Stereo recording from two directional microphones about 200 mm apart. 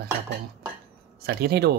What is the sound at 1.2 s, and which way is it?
Speech, 50° right (ahead or behind).